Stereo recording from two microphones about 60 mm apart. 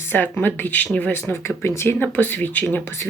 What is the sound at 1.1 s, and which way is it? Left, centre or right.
Speech, left.